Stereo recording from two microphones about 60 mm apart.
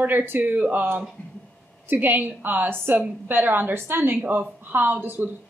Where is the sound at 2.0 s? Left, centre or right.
Right.